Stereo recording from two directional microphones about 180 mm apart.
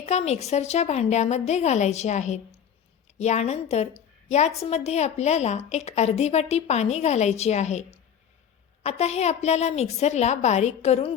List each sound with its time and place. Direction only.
0.0 s a woman's voice: 35° left (ahead or behind)